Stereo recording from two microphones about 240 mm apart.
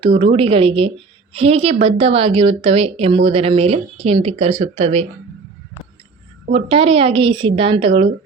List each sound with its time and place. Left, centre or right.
0.0 s a woman's voice: right
6.5 s a woman's voice: right